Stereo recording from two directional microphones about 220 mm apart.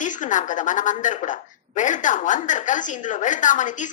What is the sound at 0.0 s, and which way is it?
A woman's voice, 35° left (ahead or behind).